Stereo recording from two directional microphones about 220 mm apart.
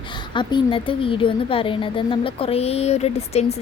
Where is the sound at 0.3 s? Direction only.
20° left (ahead or behind).